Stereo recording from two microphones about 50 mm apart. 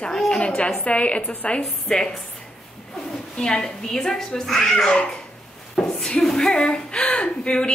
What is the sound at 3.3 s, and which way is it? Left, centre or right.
A woman's voice, centre.